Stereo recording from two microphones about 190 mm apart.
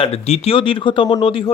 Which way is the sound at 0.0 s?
30° left (ahead or behind).